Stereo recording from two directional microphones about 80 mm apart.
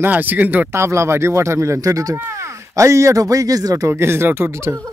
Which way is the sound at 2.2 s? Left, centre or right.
Right.